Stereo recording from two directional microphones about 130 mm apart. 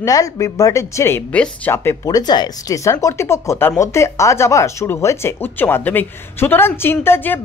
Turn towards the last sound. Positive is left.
turn(degrees=15)  # may be behind; listen again after turning